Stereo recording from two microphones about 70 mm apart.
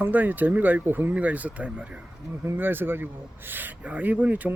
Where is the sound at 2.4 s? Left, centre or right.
Right.